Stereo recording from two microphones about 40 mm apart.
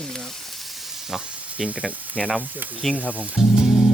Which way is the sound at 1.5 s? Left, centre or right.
Right.